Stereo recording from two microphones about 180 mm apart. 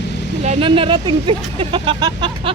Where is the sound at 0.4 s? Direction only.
35° right (ahead or behind).